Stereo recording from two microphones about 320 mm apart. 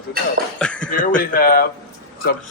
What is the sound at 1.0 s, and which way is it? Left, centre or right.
Speech, left.